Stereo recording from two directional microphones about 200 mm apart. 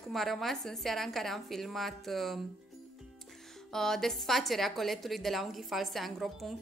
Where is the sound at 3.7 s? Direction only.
Centre (ahead or behind).